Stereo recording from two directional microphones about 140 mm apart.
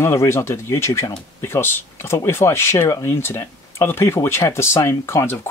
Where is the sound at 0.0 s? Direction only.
20° left (ahead or behind).